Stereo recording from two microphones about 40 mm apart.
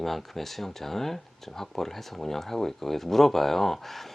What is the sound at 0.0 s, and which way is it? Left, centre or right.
Speech, centre.